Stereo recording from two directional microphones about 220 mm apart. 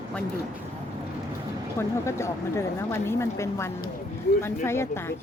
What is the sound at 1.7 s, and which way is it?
Speech, 10° left (ahead or behind).